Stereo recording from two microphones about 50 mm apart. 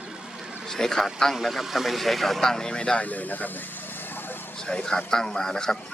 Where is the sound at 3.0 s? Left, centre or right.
Left.